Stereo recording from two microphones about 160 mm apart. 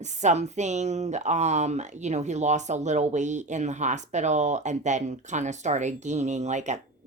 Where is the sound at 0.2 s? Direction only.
45° right (ahead or behind).